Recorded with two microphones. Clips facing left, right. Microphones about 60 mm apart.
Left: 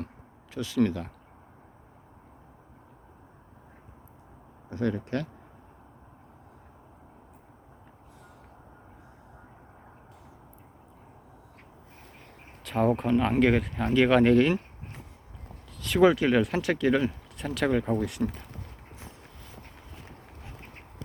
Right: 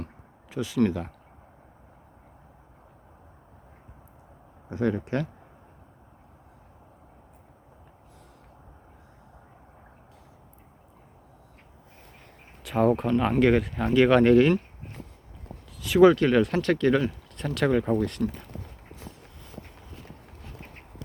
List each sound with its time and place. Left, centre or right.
0.5 s speech: centre
4.7 s speech: right
12.6 s speech: centre
15.8 s speech: centre